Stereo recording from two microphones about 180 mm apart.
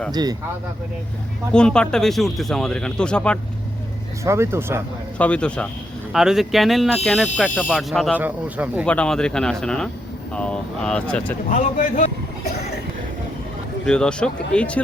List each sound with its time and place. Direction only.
0.1 s speech: 20° right (ahead or behind)
1.5 s speech: 5° left (ahead or behind)
4.2 s speech: 15° right (ahead or behind)
5.1 s speech: 5° left (ahead or behind)
8.2 s speech: 10° right (ahead or behind)
8.9 s speech: 5° left (ahead or behind)
11.4 s speech: 45° left (ahead or behind)
13.8 s speech: 5° left (ahead or behind)